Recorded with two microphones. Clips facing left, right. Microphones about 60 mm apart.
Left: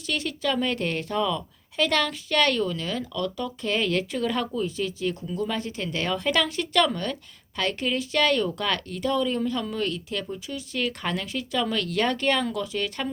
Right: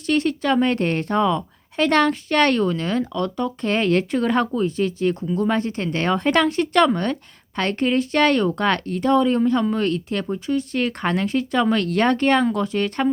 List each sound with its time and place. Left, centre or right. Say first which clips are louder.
0.0 s speech: right 8 dB; right